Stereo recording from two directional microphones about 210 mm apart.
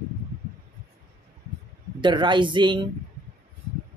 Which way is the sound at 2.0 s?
20° right (ahead or behind).